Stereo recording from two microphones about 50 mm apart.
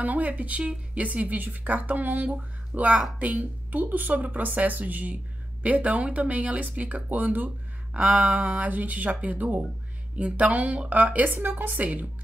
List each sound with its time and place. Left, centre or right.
0.0 s speech: right